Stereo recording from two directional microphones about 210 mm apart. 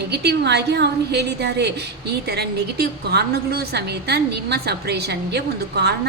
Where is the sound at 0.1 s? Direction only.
55° right (ahead or behind).